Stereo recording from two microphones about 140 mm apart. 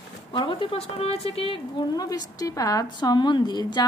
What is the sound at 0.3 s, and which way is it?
A woman's voice, 35° left (ahead or behind).